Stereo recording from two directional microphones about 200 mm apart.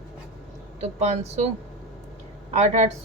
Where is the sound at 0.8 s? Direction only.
35° right (ahead or behind).